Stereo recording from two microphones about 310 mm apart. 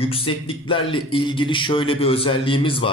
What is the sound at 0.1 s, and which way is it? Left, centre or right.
A man's voice, centre.